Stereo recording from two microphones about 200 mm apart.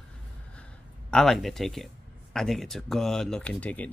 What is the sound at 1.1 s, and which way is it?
Speech, centre (ahead or behind).